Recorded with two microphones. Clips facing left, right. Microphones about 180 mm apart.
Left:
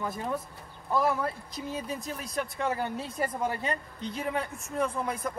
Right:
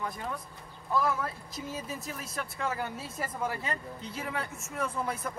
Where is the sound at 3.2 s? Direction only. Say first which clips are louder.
Left 3 dB; 35° left (ahead or behind).